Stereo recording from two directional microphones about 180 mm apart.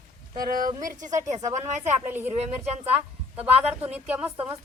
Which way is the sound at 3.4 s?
10° right (ahead or behind).